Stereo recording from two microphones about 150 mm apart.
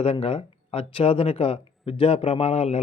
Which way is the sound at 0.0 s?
40° left (ahead or behind).